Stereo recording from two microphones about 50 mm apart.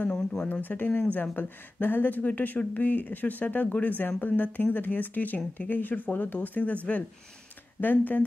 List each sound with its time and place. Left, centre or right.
0.1 s speech: centre
0.5 s speech: left
7.8 s speech: left